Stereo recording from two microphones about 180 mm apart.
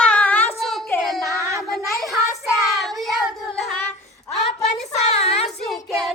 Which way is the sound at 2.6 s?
Centre (ahead or behind).